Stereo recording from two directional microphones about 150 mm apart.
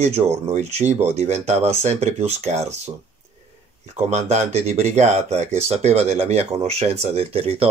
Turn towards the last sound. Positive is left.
turn(degrees=-40)  # may be behind; listen again after turning